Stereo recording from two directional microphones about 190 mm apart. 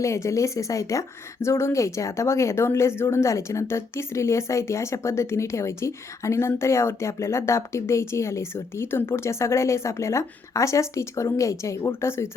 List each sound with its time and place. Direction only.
0.0 s speech: 15° left (ahead or behind)